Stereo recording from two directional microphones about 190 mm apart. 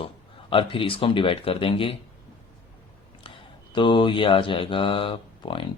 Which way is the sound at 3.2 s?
25° left (ahead or behind).